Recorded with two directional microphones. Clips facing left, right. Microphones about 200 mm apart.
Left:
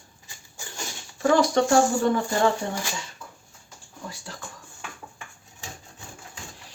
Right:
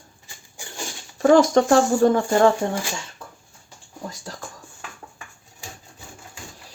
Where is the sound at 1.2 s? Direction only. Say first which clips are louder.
Right 5 dB; 45° right (ahead or behind).